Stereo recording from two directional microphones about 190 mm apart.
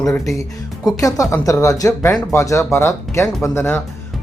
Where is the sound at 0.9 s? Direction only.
15° left (ahead or behind).